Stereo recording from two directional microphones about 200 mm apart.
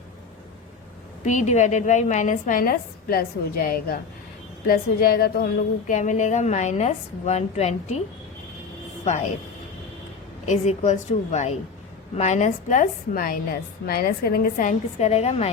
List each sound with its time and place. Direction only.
1.2 s speech: 35° left (ahead or behind)
10.4 s speech: 35° left (ahead or behind)